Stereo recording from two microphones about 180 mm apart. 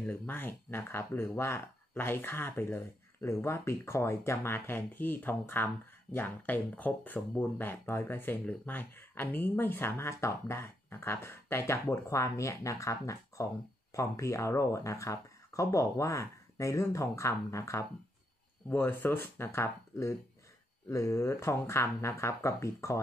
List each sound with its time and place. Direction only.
0.0 s speech: 10° left (ahead or behind)